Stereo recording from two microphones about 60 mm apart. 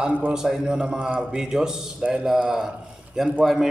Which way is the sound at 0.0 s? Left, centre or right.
Right.